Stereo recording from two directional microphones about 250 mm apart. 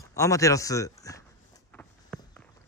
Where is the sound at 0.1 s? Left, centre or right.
Centre.